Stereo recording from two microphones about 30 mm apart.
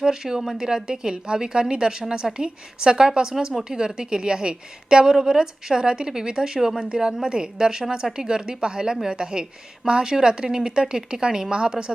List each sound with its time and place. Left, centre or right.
0.0 s speech: centre
0.9 s a woman's voice: right